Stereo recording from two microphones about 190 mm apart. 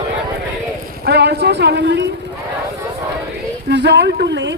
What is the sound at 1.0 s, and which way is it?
Speech, 60° right (ahead or behind).